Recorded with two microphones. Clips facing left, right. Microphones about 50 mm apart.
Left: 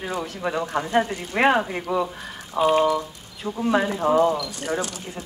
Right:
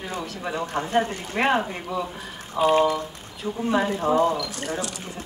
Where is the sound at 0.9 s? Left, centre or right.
Left.